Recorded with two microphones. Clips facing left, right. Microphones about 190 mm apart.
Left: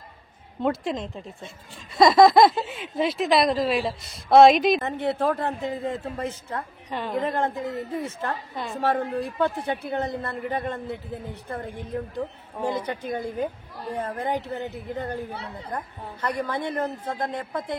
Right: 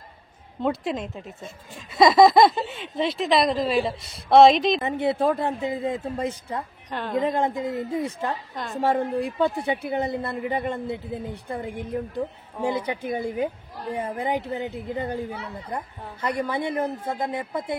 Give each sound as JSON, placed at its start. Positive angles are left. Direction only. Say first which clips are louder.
{"t": 0.6, "sound": "speech", "louder": "even", "side_deg": 0}
{"t": 4.8, "sound": "a man's voice", "louder": "right 2 dB", "side_deg": -10}
{"t": 6.9, "sound": "a woman's voice", "louder": "even", "side_deg": 10}
{"t": 7.2, "sound": "a man's voice", "louder": "right 3 dB", "side_deg": -15}